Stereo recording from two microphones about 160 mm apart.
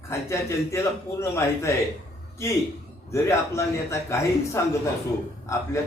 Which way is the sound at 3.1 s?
15° left (ahead or behind).